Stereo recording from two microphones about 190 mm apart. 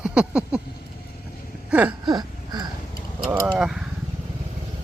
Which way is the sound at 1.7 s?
10° right (ahead or behind).